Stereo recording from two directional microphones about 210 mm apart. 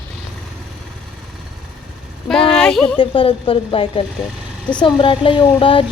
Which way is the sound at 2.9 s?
25° left (ahead or behind).